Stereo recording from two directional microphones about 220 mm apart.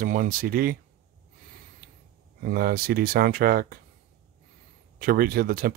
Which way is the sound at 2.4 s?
40° right (ahead or behind).